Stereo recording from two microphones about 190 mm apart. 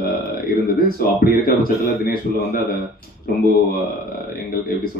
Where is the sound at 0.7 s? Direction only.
50° left (ahead or behind).